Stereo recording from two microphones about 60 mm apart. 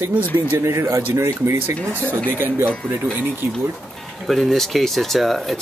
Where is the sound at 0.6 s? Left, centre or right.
Right.